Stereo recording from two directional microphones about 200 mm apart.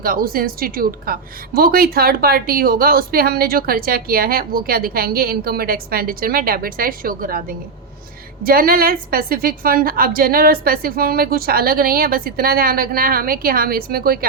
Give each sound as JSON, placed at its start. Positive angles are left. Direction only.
{"t": 0.0, "sound": "a woman's voice", "side_deg": -45}